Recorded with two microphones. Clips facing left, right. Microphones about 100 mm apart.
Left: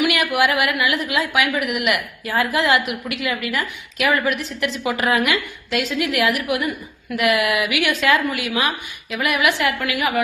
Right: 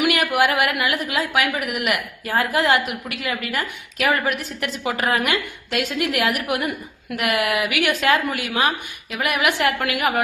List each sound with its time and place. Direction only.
0.0 s a woman's voice: 40° right (ahead or behind)